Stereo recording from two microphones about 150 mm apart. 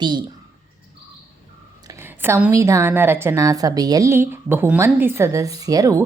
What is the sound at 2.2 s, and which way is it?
A woman's voice, 15° right (ahead or behind).